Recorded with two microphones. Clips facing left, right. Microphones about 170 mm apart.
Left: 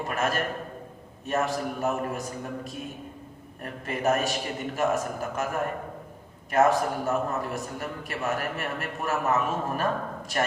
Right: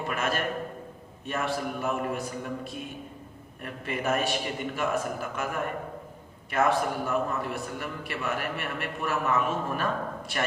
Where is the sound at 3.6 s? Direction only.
40° left (ahead or behind).